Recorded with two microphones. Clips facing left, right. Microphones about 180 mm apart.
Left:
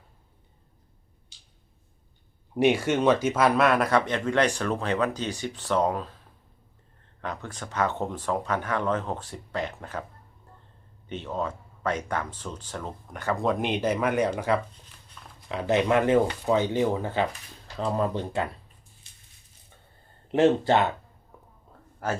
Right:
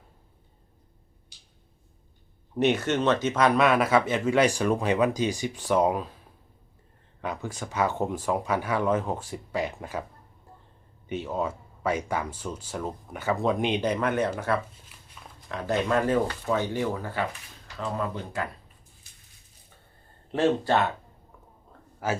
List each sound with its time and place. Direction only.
2.6 s speech: 10° left (ahead or behind); by 6.1 s 10° right (ahead or behind)
7.2 s speech: 10° right (ahead or behind)
11.1 s speech: 10° right (ahead or behind); by 17.2 s 25° left (ahead or behind)
17.7 s speech: 35° left (ahead or behind)
19.1 s a sound: 25° left (ahead or behind)
20.3 s speech: 20° left (ahead or behind)
21.7 s a sound: 5° right (ahead or behind)